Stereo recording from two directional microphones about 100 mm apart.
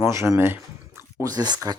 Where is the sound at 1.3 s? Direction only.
40° right (ahead or behind).